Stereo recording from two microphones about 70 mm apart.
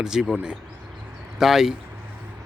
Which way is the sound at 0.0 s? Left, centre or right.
Centre.